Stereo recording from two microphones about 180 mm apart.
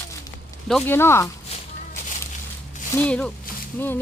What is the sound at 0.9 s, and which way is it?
Speech, 15° left (ahead or behind).